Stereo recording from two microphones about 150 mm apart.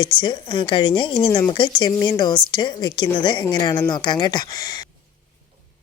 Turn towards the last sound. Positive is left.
turn(degrees=25)  # may be behind; listen again after turning